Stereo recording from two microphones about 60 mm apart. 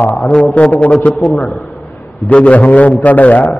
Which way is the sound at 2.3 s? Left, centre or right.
Left.